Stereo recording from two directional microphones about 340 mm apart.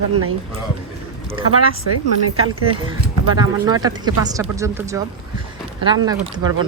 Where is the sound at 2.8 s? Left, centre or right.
Centre.